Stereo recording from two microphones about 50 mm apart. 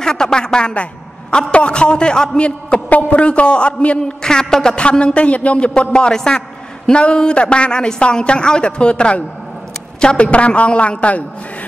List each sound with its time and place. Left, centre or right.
0.0 s a man's voice: centre